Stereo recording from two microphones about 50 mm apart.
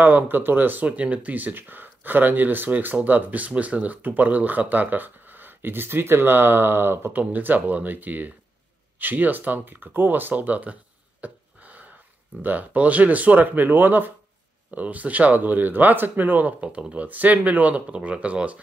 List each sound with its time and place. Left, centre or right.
0.0 s speech: right
0.8 s speech: right
7.1 s speech: right
16.6 s speech: right